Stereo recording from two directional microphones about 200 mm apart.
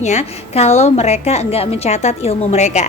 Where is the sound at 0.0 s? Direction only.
35° left (ahead or behind).